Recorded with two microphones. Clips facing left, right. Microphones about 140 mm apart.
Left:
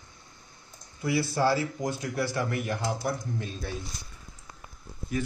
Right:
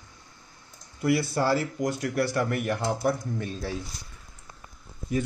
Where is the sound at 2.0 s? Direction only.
60° right (ahead or behind).